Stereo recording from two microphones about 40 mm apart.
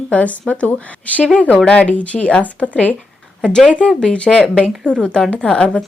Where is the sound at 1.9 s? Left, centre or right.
Left.